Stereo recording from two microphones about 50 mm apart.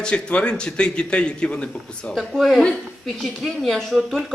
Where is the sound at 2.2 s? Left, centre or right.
Centre.